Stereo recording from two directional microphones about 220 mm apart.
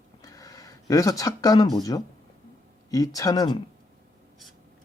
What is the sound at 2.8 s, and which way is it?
Speech, 15° left (ahead or behind).